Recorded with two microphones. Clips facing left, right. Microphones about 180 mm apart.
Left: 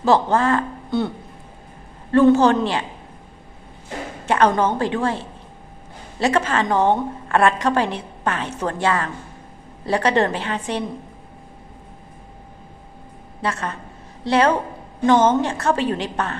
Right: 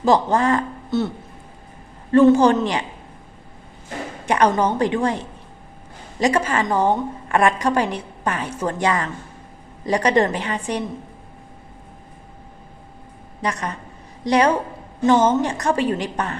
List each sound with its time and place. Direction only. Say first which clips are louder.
0.0 s a woman's voice: even; 15° right (ahead or behind)
0.9 s music: right 1 dB; centre (ahead or behind)
2.1 s a woman's voice: right 1 dB; 15° right (ahead or behind)
4.3 s a woman's voice: even; 15° right (ahead or behind)
13.4 s a woman's voice: even; 15° right (ahead or behind)